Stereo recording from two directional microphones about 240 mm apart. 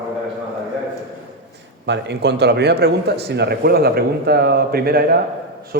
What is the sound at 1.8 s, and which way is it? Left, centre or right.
A man's voice, right.